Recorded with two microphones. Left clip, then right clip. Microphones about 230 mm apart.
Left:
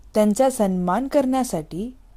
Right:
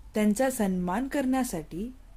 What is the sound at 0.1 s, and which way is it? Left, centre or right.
A woman's voice, left.